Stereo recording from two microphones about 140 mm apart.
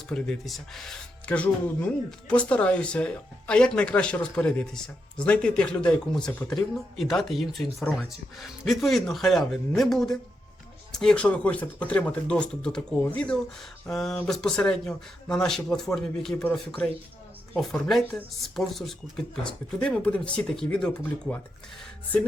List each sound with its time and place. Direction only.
0.1 s speech: centre (ahead or behind)